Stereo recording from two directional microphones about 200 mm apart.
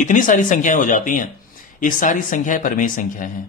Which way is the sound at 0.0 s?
40° left (ahead or behind).